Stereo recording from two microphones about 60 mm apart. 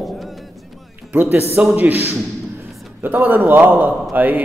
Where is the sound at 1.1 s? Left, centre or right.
Right.